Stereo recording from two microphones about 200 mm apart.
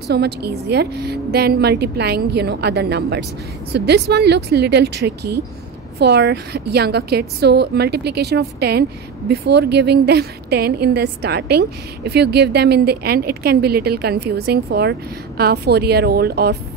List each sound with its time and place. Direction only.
0.1 s a woman's voice: 55° right (ahead or behind)